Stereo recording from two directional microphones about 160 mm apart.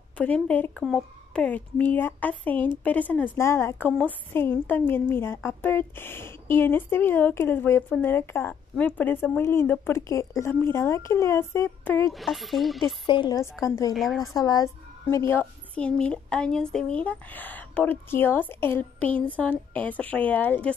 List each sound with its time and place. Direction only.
0.2 s a woman's voice: 10° left (ahead or behind)
12.1 s speech: centre (ahead or behind)
13.0 s a woman's voice: 30° left (ahead or behind)
13.9 s speech: centre (ahead or behind)
14.2 s a woman's voice: 20° left (ahead or behind)